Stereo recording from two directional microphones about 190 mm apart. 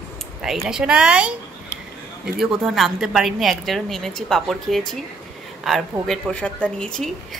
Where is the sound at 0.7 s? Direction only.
5° right (ahead or behind).